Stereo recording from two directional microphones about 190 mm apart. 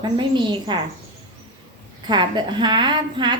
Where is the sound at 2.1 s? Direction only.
25° right (ahead or behind).